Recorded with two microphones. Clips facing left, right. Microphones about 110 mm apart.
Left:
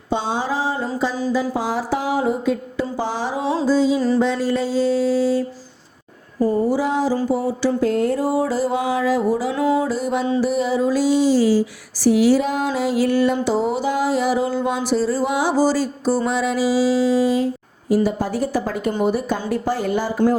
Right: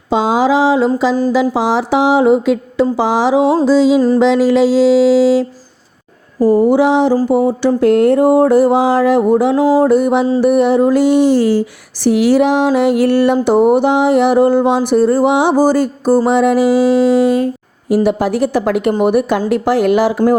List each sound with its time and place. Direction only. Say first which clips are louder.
0.1 s a sound: right 10 dB; 90° right
1.3 s mantra: right 8 dB; 90° right
2.9 s mantra: right 12 dB; 90° right
6.6 s a sound: right 10 dB; 70° right (ahead or behind)
7.3 s music: right 7 dB; 60° right (ahead or behind)
9.6 s music: right 7 dB; 35° right (ahead or behind)
9.8 s music: right 10 dB; 60° right (ahead or behind)
19.5 s speech: right 9 dB; 80° right